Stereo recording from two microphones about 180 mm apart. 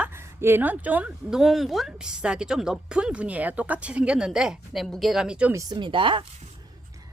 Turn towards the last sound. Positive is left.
turn(degrees=-30)  # may be behind; listen again after turning